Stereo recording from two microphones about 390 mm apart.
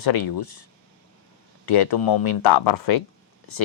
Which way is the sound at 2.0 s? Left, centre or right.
Left.